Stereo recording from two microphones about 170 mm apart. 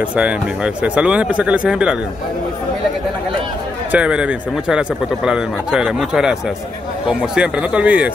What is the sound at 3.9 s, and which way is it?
Speech, 5° right (ahead or behind).